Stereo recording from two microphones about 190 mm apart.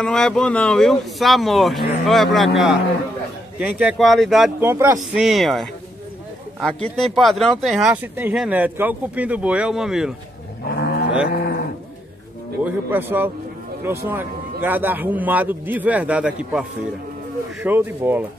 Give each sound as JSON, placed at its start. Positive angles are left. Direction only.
{"t": 0.0, "sound": "speech", "side_deg": 5}
{"t": 4.6, "sound": "a man's voice", "side_deg": -15}
{"t": 4.9, "sound": "a man's voice", "side_deg": 0}
{"t": 10.6, "sound": "cattle", "side_deg": 60}
{"t": 12.6, "sound": "a man's voice", "side_deg": -10}
{"t": 17.6, "sound": "a man's voice", "side_deg": -10}